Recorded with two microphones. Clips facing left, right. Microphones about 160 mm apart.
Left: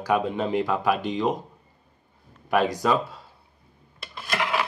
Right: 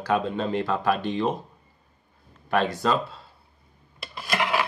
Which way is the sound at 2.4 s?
15° left (ahead or behind).